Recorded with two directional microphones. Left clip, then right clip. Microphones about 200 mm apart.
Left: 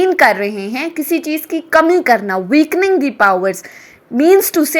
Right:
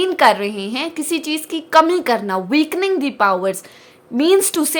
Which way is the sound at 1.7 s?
10° left (ahead or behind).